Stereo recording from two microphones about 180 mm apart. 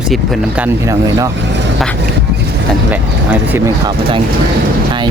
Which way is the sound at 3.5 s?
20° right (ahead or behind).